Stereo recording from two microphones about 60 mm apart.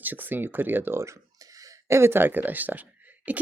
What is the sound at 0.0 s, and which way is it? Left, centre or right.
Speech, right.